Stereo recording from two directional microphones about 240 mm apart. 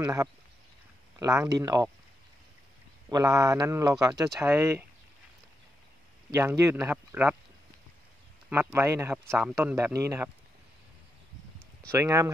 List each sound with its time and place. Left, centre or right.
0.0 s speech: centre
3.1 s speech: centre
6.3 s speech: centre
8.5 s speech: centre
11.9 s speech: centre